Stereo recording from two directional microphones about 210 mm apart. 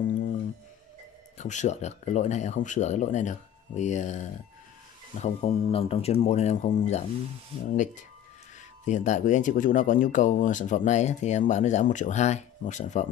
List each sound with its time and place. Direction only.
1.4 s speech: 35° left (ahead or behind)